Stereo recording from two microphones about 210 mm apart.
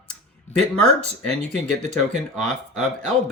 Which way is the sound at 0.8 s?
5° left (ahead or behind).